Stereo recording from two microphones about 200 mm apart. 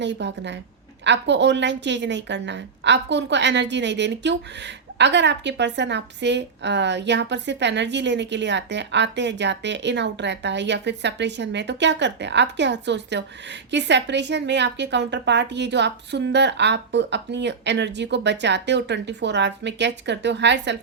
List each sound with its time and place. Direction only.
0.0 s a woman's voice: 60° right (ahead or behind)